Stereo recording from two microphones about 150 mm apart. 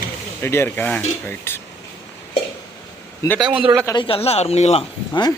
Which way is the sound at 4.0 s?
40° left (ahead or behind).